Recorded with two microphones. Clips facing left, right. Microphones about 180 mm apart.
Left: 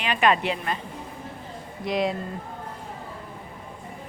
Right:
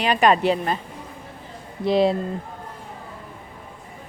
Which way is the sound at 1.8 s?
30° right (ahead or behind).